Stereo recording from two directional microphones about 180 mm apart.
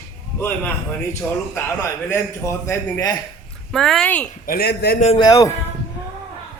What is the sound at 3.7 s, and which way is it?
Speech, centre (ahead or behind).